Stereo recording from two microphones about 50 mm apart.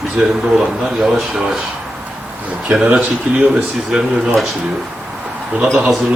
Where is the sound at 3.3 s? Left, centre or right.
Right.